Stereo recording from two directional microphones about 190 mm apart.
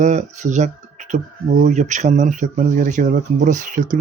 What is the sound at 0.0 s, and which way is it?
Speech, 40° right (ahead or behind).